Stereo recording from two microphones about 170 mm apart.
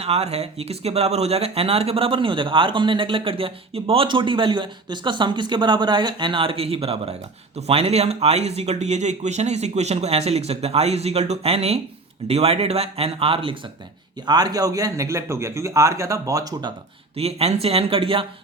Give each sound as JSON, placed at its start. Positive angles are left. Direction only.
{"t": 0.0, "sound": "a man's voice", "side_deg": -40}
{"t": 17.2, "sound": "speech", "side_deg": -35}